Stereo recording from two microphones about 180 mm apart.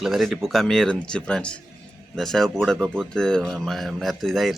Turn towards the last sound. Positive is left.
turn(degrees=0)  # may be behind; listen again after turning